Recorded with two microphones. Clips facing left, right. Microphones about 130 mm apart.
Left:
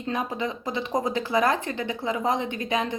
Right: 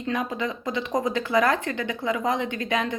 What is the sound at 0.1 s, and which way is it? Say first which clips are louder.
Speech: right 1 dB; 25° left (ahead or behind).